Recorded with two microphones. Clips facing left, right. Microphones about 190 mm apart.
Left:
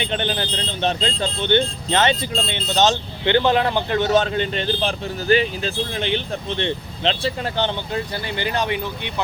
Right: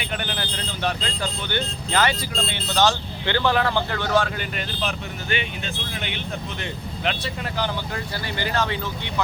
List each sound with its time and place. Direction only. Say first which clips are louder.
0.0 s speech: left 6 dB; 25° left (ahead or behind)